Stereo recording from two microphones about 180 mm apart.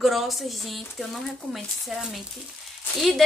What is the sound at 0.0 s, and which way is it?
Speech, centre (ahead or behind).